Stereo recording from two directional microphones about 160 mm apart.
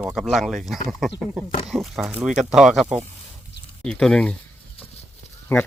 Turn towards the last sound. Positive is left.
turn(degrees=15)  # may be behind; listen again after turning